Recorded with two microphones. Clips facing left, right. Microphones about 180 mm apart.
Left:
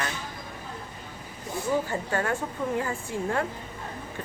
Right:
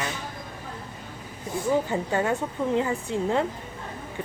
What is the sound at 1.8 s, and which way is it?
A woman's voice, 20° right (ahead or behind).